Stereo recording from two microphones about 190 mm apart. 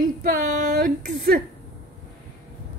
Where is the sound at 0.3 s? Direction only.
45° right (ahead or behind).